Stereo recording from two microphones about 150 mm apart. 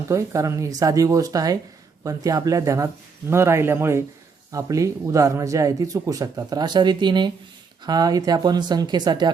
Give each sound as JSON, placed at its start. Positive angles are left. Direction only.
{"t": 0.1, "sound": "speech", "side_deg": -20}